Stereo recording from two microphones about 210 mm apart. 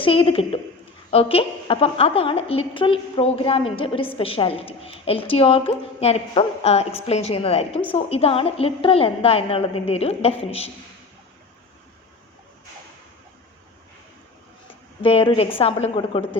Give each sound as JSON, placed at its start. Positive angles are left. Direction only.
{"t": 0.0, "sound": "a woman's voice", "side_deg": 25}
{"t": 15.0, "sound": "a woman's voice", "side_deg": 25}